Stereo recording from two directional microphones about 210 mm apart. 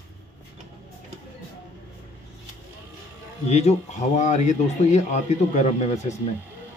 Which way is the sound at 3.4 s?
30° left (ahead or behind).